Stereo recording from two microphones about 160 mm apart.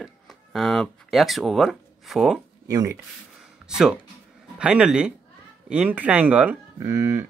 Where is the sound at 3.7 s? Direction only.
5° right (ahead or behind).